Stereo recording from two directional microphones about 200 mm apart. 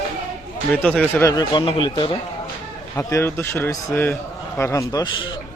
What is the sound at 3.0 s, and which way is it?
A man's voice, 15° left (ahead or behind).